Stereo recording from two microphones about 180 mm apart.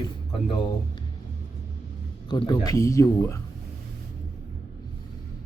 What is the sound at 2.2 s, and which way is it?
Speech, 25° left (ahead or behind).